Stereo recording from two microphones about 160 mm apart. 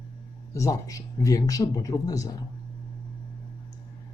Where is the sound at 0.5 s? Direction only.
20° left (ahead or behind).